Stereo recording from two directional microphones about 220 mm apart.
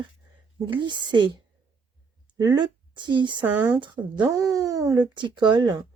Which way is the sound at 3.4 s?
10° right (ahead or behind).